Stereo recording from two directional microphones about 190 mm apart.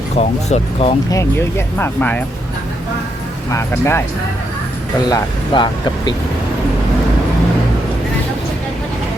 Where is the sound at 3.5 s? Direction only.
15° left (ahead or behind).